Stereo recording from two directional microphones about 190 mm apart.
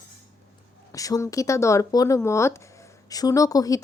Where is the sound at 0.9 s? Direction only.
15° left (ahead or behind).